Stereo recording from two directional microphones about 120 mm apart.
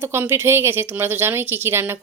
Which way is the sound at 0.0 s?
20° right (ahead or behind).